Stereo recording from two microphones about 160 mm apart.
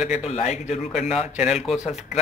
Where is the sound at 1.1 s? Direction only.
5° right (ahead or behind).